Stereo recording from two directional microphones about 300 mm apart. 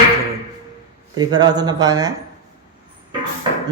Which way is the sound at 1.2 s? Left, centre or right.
Centre.